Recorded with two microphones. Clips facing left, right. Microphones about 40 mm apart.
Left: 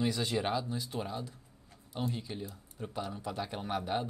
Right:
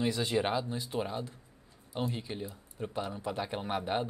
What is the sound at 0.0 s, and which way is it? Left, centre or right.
A man's voice, centre.